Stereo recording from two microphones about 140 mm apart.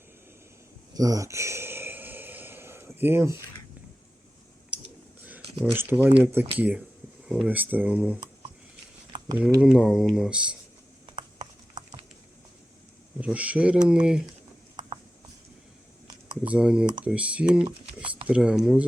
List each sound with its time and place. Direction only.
0.9 s a sound: 25° right (ahead or behind)
4.7 s clicking: 10° right (ahead or behind)
5.2 s speech: 15° right (ahead or behind)
9.6 s speech: 5° right (ahead or behind)
13.1 s speech: 10° right (ahead or behind)
16.4 s speech: 10° right (ahead or behind)